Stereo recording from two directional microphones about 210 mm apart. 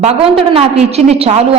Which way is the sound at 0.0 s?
30° right (ahead or behind).